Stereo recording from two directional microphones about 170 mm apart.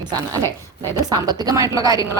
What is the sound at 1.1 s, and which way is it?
Speech, 25° right (ahead or behind).